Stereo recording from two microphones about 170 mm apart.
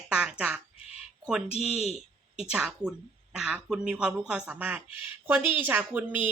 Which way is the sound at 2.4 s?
5° right (ahead or behind).